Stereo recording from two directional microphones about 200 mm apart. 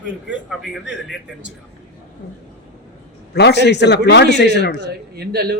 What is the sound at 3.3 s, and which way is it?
A man's voice, 55° left (ahead or behind).